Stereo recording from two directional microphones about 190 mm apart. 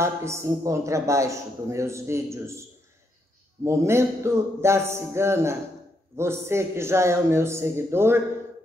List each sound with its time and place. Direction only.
0.0 s a man's voice: 15° right (ahead or behind)
3.6 s a man's voice: 15° right (ahead or behind)